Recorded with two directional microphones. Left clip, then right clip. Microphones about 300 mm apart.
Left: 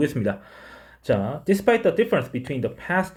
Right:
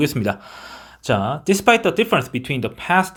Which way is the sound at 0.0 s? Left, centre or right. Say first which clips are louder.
Right 3 dB; centre.